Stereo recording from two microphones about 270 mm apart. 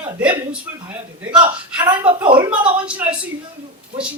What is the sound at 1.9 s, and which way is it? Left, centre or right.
Speech, centre.